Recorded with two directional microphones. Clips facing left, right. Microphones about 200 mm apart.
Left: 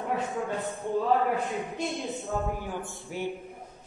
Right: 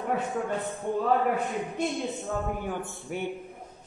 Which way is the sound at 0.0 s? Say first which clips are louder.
Right 1 dB; centre (ahead or behind).